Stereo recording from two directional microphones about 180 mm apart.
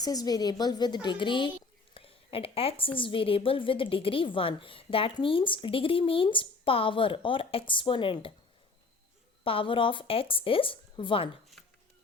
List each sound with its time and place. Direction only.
0.0 s a woman's voice: 20° left (ahead or behind)
9.4 s a woman's voice: 30° left (ahead or behind)